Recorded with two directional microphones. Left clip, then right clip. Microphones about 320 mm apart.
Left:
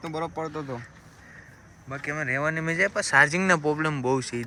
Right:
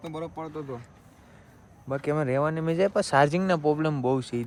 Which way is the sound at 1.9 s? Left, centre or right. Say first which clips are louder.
Right 2 dB; centre.